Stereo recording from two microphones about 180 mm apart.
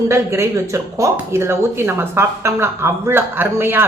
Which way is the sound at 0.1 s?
15° right (ahead or behind).